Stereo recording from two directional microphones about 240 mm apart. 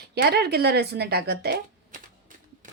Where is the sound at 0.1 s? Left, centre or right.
Right.